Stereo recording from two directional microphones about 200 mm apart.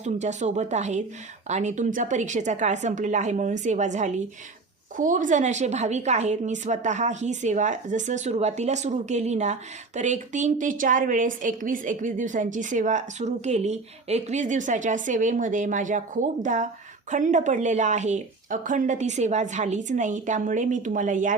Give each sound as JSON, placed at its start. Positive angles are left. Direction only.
{"t": 0.0, "sound": "a woman's voice", "side_deg": -35}